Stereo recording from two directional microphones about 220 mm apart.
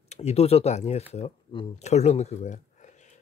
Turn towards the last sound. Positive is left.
turn(degrees=35)  # may be behind; listen again after turning